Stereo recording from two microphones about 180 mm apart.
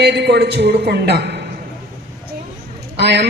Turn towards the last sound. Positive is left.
turn(degrees=-70)  # may be behind; listen again after turning